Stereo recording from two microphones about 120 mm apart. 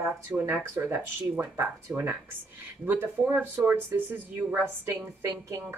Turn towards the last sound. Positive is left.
turn(degrees=-25)  # may be behind; listen again after turning